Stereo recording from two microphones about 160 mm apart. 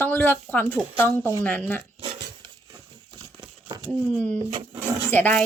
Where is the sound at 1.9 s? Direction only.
35° right (ahead or behind).